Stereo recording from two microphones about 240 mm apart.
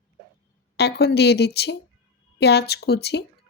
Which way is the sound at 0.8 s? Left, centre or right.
Left.